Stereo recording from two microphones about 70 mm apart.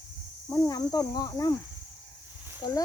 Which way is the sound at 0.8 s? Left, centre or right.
Left.